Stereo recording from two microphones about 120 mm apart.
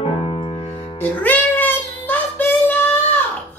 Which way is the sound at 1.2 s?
15° left (ahead or behind).